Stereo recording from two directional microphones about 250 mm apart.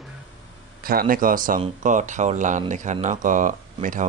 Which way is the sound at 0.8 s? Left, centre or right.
Right.